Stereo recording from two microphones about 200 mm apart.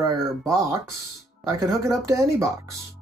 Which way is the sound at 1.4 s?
15° right (ahead or behind).